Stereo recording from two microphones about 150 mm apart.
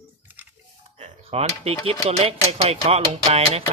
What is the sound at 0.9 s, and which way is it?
Speech, 45° right (ahead or behind).